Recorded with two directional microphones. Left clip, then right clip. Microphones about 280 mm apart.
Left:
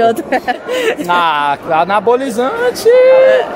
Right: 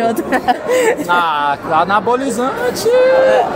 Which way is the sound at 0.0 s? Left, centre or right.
Centre.